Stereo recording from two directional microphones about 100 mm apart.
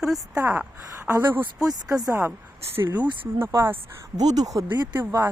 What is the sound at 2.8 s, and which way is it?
A woman's voice, 20° right (ahead or behind).